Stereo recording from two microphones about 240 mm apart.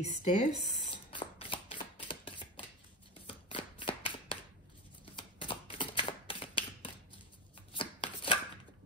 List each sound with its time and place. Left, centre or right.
0.0 s shuffling cards: left
5.1 s a sound: left
7.7 s chopping: left